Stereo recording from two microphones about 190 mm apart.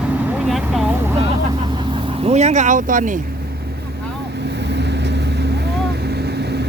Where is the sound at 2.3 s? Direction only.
35° right (ahead or behind).